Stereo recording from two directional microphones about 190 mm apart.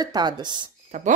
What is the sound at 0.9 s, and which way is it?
Speech, 35° right (ahead or behind).